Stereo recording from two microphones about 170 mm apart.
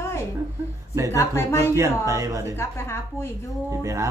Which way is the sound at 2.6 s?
15° left (ahead or behind).